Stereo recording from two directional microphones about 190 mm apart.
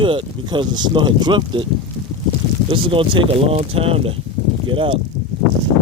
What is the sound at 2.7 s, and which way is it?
Speech, 25° right (ahead or behind).